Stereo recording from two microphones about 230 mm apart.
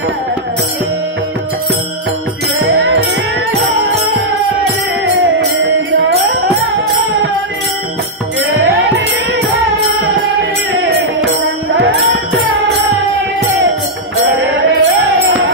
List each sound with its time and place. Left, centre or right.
2.7 s music: right
11.7 s music: right
14.5 s music: right